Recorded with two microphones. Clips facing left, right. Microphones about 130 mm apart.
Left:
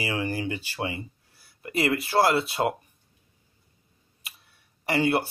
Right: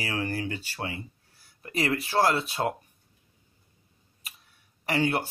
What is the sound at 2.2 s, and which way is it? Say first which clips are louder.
Speech: left 2 dB; 20° left (ahead or behind).